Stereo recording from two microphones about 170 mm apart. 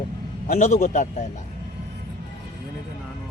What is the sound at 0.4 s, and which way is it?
Speech, 45° left (ahead or behind).